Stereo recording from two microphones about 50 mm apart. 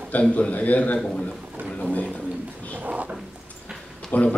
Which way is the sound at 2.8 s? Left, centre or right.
Right.